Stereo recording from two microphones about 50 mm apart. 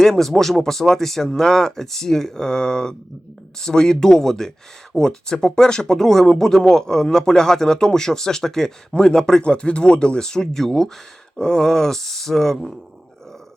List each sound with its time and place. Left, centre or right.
0.0 s speech: centre